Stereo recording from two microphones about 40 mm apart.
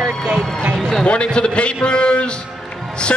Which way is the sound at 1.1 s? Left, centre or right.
Left.